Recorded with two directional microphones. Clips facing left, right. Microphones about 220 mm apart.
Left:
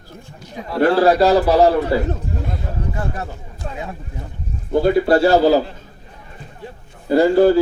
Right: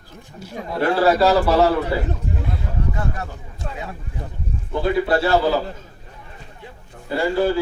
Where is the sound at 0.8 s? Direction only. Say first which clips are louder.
Left 3 dB; 35° left (ahead or behind).